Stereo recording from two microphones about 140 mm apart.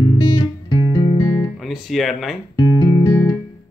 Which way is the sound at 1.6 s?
Centre (ahead or behind).